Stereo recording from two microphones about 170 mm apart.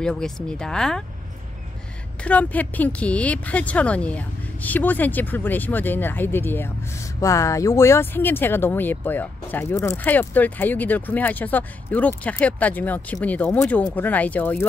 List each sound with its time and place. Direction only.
0.0 s speech: 5° left (ahead or behind)
2.2 s speech: 10° left (ahead or behind)